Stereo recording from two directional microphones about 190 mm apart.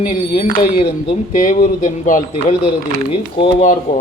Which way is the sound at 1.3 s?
45° left (ahead or behind).